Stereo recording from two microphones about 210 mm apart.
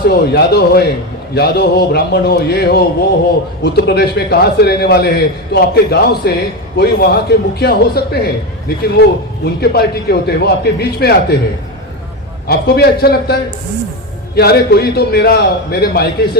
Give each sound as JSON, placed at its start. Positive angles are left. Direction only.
{"t": 0.0, "sound": "a man's voice", "side_deg": 50}
{"t": 12.5, "sound": "a man's voice", "side_deg": 50}
{"t": 14.3, "sound": "a man's voice", "side_deg": 50}